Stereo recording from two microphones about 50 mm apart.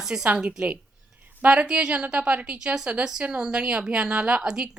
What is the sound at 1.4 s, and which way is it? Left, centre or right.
A woman's voice, right.